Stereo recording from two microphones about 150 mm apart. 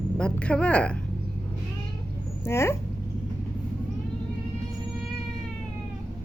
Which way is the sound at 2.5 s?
15° left (ahead or behind).